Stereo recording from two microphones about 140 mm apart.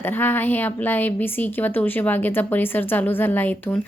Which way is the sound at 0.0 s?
15° left (ahead or behind).